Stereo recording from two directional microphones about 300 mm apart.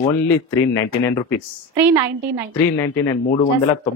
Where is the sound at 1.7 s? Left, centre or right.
Centre.